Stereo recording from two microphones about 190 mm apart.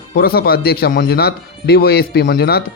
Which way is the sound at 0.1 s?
55° left (ahead or behind).